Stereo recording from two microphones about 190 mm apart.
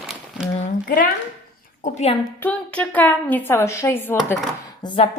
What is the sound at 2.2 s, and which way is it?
A woman's voice, 10° left (ahead or behind).